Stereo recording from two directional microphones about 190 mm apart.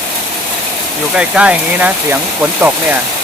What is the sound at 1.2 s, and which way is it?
Speech, 5° right (ahead or behind).